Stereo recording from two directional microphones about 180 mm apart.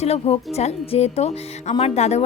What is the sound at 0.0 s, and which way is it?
A woman's voice, 35° left (ahead or behind).